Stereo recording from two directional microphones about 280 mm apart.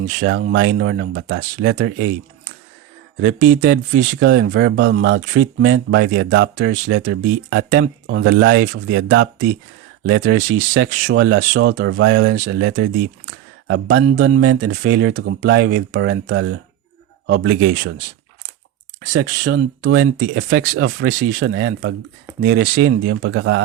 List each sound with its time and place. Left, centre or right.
0.5 s speech: right
3.2 s speech: right
3.4 s speech: right
14.0 s speech: right
19.1 s speech: right